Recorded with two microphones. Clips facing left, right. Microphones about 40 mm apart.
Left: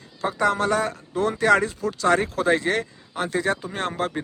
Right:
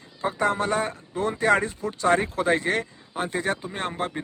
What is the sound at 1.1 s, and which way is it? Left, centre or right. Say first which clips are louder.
Speech: left 2 dB; left.